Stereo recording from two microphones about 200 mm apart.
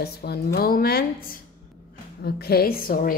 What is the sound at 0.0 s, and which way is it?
A woman's voice, 50° left (ahead or behind).